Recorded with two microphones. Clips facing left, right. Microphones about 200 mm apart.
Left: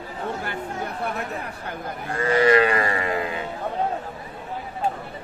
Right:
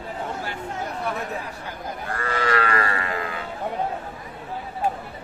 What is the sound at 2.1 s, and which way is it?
Livestock, 20° left (ahead or behind).